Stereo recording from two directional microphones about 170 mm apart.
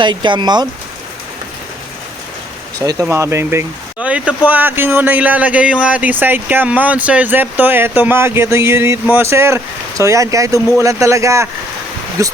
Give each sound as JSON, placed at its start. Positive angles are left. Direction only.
{"t": 0.0, "sound": "speech", "side_deg": -25}
{"t": 2.7, "sound": "speech", "side_deg": -20}